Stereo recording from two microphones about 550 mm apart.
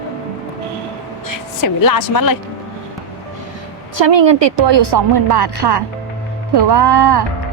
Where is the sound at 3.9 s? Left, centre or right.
Right.